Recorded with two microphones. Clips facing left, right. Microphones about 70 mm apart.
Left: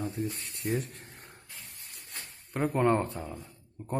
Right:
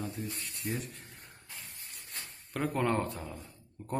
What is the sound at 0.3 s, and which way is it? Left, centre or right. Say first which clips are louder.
Speech: left 5 dB; left.